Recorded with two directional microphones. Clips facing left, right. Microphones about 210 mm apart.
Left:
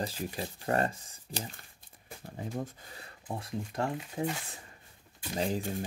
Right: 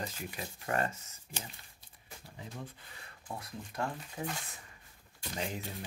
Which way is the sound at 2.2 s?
50° left (ahead or behind).